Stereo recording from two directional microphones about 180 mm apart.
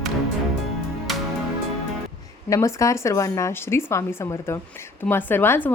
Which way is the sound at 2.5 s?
15° left (ahead or behind).